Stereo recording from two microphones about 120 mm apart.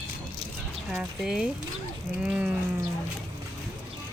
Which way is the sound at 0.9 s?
5° right (ahead or behind).